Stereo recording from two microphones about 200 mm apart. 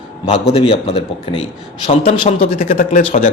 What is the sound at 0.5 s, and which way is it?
A man's voice, 25° left (ahead or behind).